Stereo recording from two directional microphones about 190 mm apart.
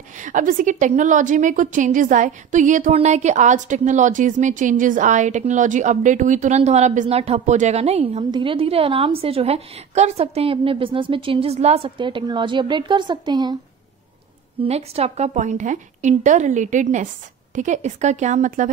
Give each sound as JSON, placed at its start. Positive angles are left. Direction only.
{"t": 0.2, "sound": "a woman's voice", "side_deg": -45}
{"t": 14.6, "sound": "a woman's voice", "side_deg": -35}